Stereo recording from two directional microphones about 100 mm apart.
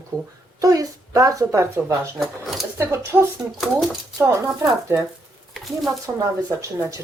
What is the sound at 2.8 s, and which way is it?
Speech, 25° right (ahead or behind).